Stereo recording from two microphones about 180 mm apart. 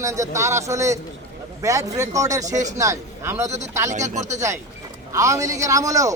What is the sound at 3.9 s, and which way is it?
Speech, 40° right (ahead or behind).